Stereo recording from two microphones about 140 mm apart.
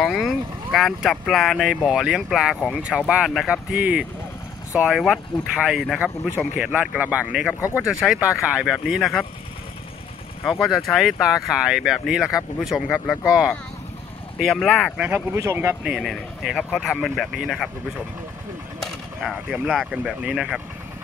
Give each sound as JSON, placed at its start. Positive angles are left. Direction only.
{"t": 0.0, "sound": "speech", "side_deg": 0}
{"t": 7.6, "sound": "speech", "side_deg": 20}
{"t": 7.9, "sound": "speech", "side_deg": 0}
{"t": 10.6, "sound": "speech", "side_deg": 0}
{"t": 15.0, "sound": "speech", "side_deg": -15}
{"t": 15.8, "sound": "speech", "side_deg": -5}
{"t": 18.8, "sound": "speech", "side_deg": 0}